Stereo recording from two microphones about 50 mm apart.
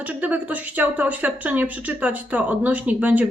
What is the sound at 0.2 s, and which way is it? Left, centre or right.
Speech, right.